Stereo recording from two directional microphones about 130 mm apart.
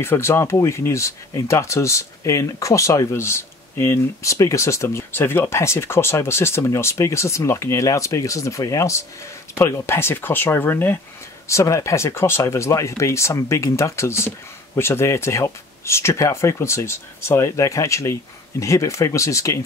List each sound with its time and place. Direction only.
0.0 s speech: 20° left (ahead or behind)